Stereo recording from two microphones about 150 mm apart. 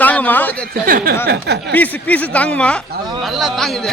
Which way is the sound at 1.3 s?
90° right.